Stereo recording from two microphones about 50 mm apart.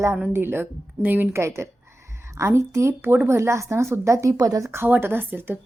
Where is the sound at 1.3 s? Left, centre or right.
Right.